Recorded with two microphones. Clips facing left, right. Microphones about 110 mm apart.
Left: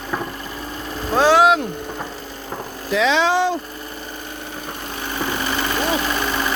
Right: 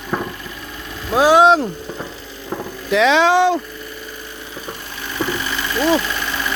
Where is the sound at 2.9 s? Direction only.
65° right (ahead or behind).